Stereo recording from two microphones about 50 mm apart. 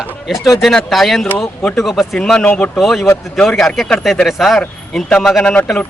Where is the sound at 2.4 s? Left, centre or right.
Left.